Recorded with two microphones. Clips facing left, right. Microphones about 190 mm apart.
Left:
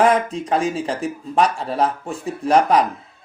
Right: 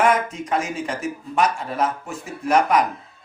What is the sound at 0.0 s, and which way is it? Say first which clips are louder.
Speech: left 3 dB; 35° left (ahead or behind).